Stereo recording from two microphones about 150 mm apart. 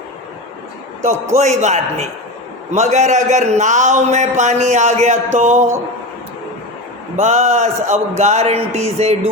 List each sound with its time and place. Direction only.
1.4 s a man's voice: 50° right (ahead or behind)
7.2 s a man's voice: 50° right (ahead or behind)